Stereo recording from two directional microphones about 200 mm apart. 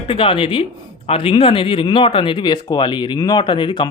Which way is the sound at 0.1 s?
25° left (ahead or behind).